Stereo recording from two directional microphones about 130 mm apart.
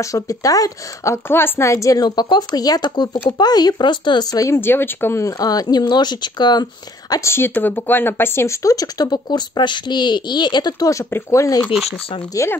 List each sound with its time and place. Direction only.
0.0 s speech: 25° left (ahead or behind)